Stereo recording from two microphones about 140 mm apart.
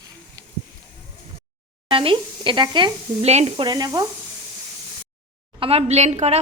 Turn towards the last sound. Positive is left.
turn(degrees=-50)  # may be behind; listen again after turning